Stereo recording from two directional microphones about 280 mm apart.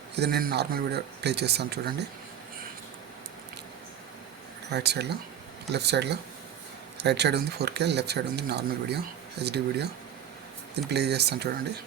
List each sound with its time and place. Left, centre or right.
0.2 s speech: right
4.7 s speech: right
10.8 s speech: right